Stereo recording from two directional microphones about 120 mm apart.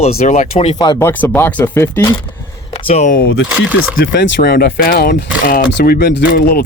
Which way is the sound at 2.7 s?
50° left (ahead or behind).